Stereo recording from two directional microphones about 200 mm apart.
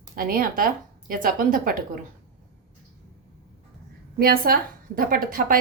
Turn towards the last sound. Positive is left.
turn(degrees=-45)  # may be behind; listen again after turning